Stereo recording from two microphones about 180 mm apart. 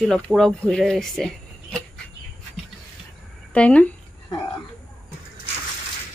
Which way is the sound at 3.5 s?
5° left (ahead or behind).